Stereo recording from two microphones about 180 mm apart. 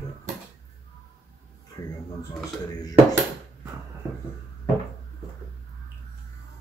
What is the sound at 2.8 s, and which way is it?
Speech, 20° left (ahead or behind).